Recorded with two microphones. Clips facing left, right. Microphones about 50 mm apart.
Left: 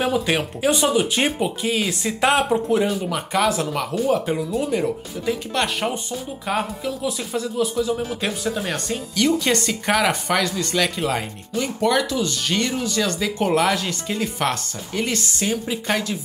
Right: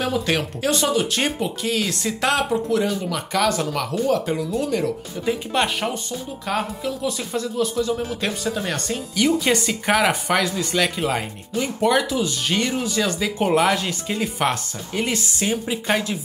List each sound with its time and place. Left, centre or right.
0.0 s speech: centre
5.2 s speech: centre
6.4 s speech: centre
9.1 s speech: centre